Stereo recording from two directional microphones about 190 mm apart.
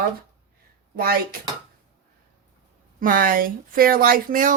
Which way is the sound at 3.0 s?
45° right (ahead or behind).